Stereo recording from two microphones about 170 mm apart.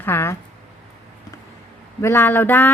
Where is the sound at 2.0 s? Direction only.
15° left (ahead or behind).